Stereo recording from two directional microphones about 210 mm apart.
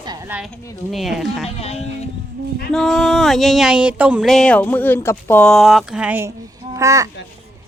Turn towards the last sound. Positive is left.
turn(degrees=-15)  # may be behind; listen again after turning